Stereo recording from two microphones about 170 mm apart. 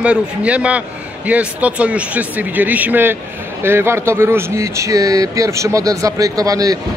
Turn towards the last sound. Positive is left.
turn(degrees=-20)  # may be behind; listen again after turning